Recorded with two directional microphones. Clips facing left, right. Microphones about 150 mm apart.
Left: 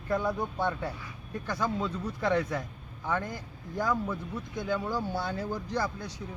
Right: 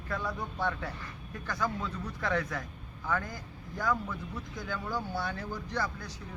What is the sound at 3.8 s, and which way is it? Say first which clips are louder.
Speech: left 2 dB; 15° left (ahead or behind).